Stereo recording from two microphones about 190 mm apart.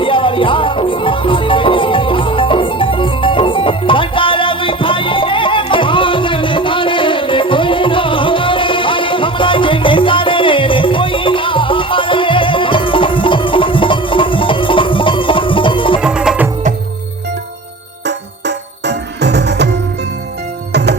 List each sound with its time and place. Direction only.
0.0 s music: 25° left (ahead or behind)
16.0 s music: 5° right (ahead or behind)
18.0 s music: 65° right (ahead or behind)
20.7 s music: 60° right (ahead or behind)